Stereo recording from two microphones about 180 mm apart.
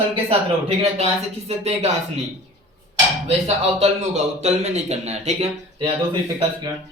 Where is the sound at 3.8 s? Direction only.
35° right (ahead or behind).